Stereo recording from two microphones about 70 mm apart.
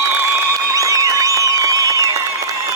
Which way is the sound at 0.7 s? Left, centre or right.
Right.